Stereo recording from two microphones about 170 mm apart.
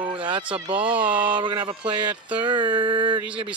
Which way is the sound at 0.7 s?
10° right (ahead or behind).